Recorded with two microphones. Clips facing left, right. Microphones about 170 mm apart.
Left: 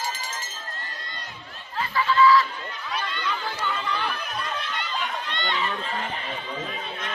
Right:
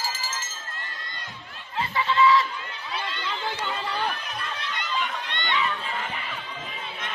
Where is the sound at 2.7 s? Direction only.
25° right (ahead or behind).